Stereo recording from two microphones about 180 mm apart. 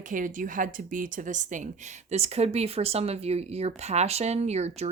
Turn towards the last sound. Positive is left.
turn(degrees=-35)  # may be behind; listen again after turning